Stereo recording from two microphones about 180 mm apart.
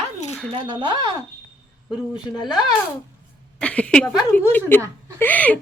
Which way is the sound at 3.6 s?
5° left (ahead or behind).